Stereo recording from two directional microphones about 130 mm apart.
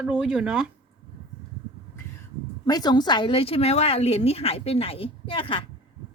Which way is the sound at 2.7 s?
30° left (ahead or behind).